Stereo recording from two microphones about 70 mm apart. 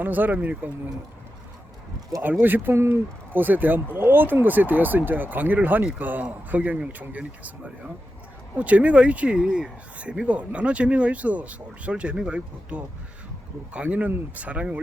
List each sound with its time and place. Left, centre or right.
0.0 s speech: right
2.2 s speech: right